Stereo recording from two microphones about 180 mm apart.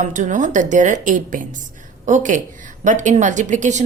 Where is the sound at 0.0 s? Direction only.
45° right (ahead or behind).